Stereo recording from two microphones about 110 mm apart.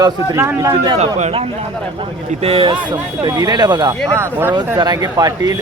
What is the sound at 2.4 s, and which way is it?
Speech, 60° right (ahead or behind).